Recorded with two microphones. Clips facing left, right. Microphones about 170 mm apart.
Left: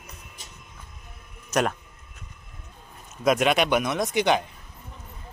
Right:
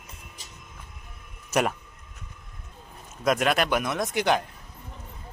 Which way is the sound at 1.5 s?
5° right (ahead or behind).